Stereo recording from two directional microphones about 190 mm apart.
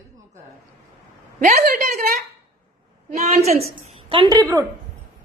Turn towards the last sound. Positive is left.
turn(degrees=-15)  # may be behind; listen again after turning